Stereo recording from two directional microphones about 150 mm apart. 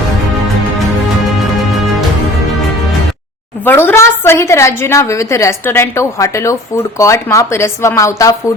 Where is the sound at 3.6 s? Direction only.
15° left (ahead or behind).